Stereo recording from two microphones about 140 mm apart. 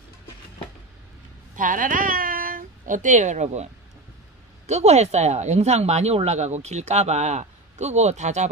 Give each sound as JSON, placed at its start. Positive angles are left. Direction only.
{"t": 1.6, "sound": "speech", "side_deg": -70}
{"t": 4.6, "sound": "speech", "side_deg": -55}